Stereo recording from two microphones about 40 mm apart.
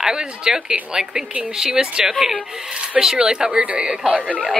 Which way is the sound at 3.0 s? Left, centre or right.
Centre.